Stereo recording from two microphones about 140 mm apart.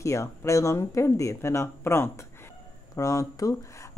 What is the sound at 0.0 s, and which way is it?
Speech, 20° left (ahead or behind).